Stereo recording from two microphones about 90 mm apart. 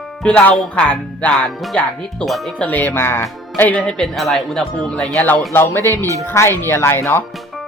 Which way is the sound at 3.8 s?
5° left (ahead or behind).